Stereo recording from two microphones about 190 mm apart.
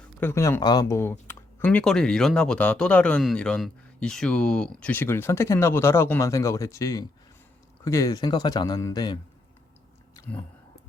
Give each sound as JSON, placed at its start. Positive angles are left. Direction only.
{"t": 0.2, "sound": "speech", "side_deg": 15}